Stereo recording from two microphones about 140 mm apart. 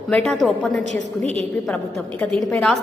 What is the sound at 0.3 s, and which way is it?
Speech, 5° left (ahead or behind).